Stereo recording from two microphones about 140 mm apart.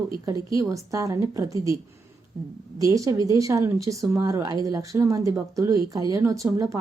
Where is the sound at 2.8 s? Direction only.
20° right (ahead or behind).